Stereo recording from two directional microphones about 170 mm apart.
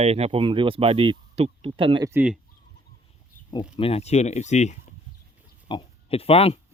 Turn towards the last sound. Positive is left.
turn(degrees=35)  # may be behind; listen again after turning